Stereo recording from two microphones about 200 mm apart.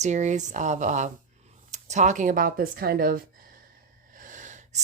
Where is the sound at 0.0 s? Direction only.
35° right (ahead or behind).